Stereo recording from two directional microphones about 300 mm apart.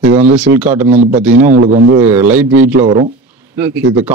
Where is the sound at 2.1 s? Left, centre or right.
Centre.